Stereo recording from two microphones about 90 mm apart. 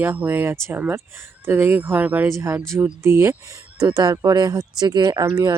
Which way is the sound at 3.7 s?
45° right (ahead or behind).